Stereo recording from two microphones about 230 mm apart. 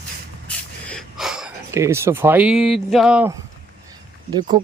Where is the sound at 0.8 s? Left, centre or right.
Centre.